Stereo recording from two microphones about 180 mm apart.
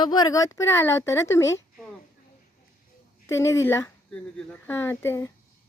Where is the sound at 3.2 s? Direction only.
15° left (ahead or behind).